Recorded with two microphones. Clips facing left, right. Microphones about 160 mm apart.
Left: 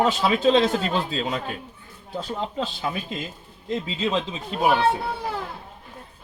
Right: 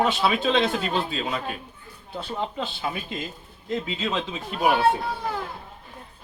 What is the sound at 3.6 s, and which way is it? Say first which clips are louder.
Speech: left 2 dB; 30° left (ahead or behind).